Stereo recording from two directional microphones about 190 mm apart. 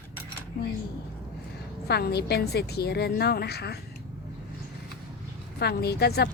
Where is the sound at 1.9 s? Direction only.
60° left (ahead or behind).